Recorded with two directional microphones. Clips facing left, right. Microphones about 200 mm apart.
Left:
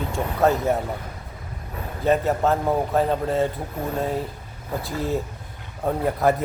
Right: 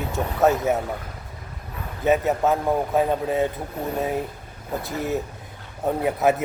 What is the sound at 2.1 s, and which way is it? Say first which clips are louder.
Speech: even; centre (ahead or behind).